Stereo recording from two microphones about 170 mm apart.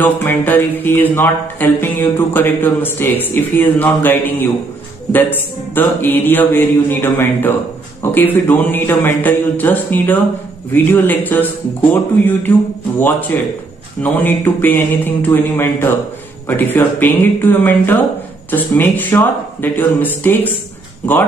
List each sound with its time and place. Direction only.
0.0 s music: 10° left (ahead or behind)
21.0 s speech: 10° left (ahead or behind)